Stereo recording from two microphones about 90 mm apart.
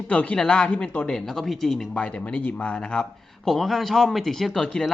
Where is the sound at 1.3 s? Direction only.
Centre (ahead or behind).